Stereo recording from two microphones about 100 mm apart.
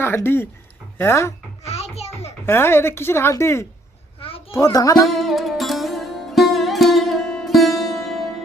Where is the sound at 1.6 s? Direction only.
90° left.